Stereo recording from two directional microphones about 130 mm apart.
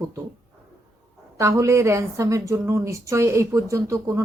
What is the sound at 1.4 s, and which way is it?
Speech, 20° right (ahead or behind).